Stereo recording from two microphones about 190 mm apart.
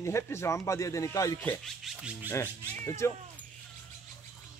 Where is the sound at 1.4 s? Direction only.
Centre (ahead or behind).